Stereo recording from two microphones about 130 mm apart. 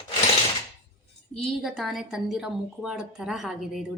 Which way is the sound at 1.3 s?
Centre (ahead or behind).